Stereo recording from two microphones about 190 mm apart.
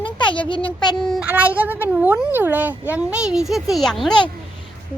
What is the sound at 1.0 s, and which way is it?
A child's voice, 5° right (ahead or behind).